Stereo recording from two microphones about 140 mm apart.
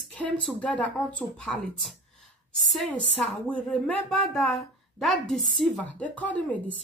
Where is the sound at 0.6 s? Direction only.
10° left (ahead or behind).